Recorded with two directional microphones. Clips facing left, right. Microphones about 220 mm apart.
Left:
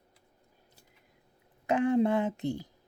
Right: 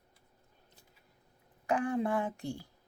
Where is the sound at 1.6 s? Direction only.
25° left (ahead or behind).